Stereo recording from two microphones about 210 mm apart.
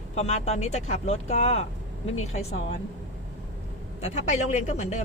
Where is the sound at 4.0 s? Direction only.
30° left (ahead or behind).